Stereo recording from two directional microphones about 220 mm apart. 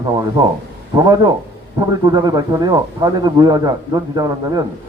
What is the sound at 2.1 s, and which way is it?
A man's voice, 20° right (ahead or behind).